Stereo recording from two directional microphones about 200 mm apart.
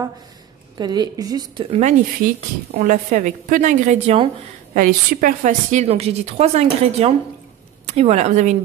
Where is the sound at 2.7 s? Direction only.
40° right (ahead or behind).